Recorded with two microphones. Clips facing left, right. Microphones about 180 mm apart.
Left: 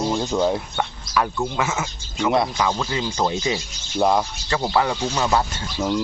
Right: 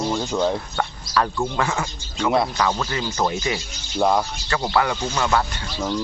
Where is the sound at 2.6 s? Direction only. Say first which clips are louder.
Even; 15° left (ahead or behind).